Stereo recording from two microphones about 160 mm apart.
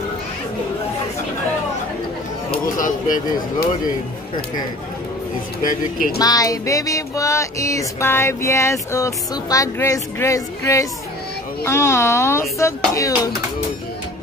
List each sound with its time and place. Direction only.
2.6 s speech: 60° left (ahead or behind)
5.6 s speech: 60° left (ahead or behind)
6.1 s music: 20° left (ahead or behind)
11.6 s speech: 15° left (ahead or behind)